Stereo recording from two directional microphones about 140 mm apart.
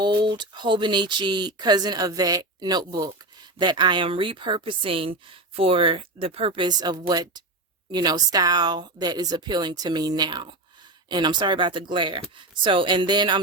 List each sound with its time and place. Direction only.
0.0 s speech: 35° right (ahead or behind)